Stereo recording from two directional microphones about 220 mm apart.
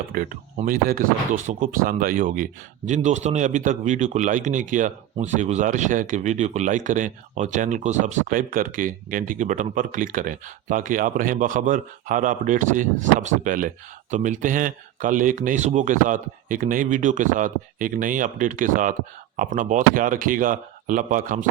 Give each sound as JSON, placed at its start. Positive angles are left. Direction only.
{"t": 0.1, "sound": "speech", "side_deg": -40}